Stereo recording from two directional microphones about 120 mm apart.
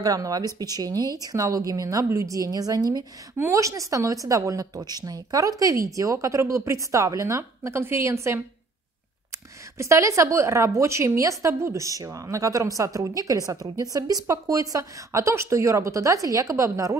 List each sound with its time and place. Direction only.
0.0 s a woman's voice: 30° right (ahead or behind)
9.8 s a woman's voice: 25° right (ahead or behind)